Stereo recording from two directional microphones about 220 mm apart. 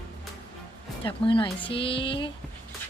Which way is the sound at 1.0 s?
25° left (ahead or behind).